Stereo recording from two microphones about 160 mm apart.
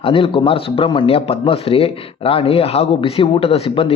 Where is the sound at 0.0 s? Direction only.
35° left (ahead or behind).